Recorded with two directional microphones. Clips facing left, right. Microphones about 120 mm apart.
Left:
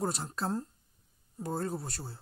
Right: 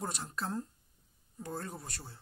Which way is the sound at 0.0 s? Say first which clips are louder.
Left 5 dB; 35° left (ahead or behind).